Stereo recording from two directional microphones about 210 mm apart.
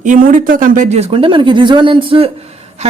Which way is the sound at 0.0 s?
40° right (ahead or behind).